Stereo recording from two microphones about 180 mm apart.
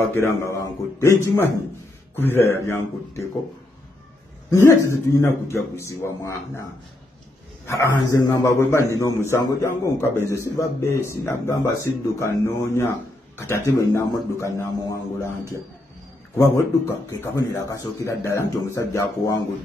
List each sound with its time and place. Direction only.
0.1 s a man's voice: 15° left (ahead or behind)
4.5 s a man's voice: 15° left (ahead or behind)
7.6 s a man's voice: 15° left (ahead or behind)
16.3 s a man's voice: 15° left (ahead or behind)